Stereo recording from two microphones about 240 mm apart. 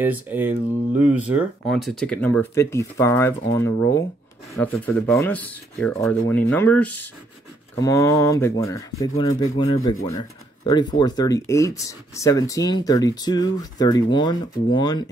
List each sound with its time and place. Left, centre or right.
0.0 s speech: centre